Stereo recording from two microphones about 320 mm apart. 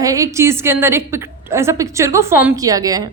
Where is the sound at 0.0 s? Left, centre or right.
Centre.